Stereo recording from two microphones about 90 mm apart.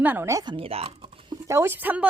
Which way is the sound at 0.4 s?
80° right.